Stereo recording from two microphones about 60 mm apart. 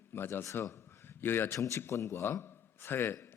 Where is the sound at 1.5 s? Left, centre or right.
Left.